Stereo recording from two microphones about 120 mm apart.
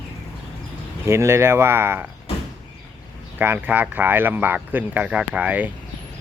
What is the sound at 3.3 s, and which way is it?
Speech, 15° right (ahead or behind).